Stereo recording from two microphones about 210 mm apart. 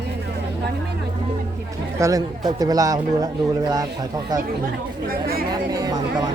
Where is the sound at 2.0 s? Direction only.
15° right (ahead or behind).